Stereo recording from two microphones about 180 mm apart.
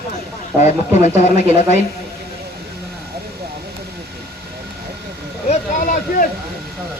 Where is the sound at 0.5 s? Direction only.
15° right (ahead or behind).